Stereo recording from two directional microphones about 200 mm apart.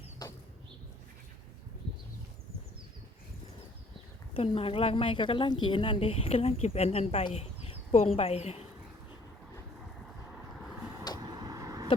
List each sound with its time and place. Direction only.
4.4 s a woman's voice: 25° left (ahead or behind)
11.2 s vehicle: 20° right (ahead or behind)